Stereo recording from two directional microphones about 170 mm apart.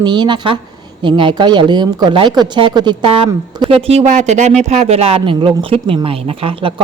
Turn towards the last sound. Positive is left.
turn(degrees=-30)  # may be behind; listen again after turning